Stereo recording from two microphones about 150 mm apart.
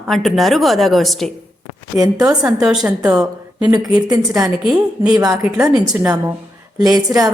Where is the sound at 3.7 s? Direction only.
25° right (ahead or behind).